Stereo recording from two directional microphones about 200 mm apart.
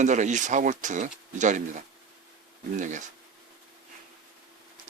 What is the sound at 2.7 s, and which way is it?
Speech, 40° right (ahead or behind).